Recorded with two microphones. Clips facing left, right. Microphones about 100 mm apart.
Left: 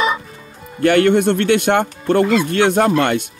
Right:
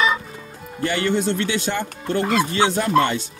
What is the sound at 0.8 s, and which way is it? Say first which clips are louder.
Speech: left 8 dB; 60° left (ahead or behind).